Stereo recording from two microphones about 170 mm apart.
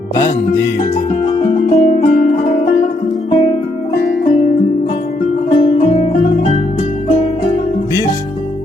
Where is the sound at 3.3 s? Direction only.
20° left (ahead or behind).